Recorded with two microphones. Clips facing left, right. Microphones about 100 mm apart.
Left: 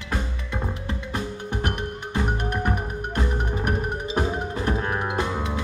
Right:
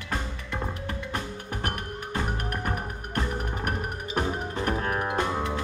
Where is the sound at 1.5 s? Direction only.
25° left (ahead or behind).